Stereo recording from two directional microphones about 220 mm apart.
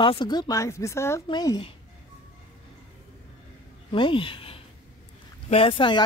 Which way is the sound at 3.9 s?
25° left (ahead or behind).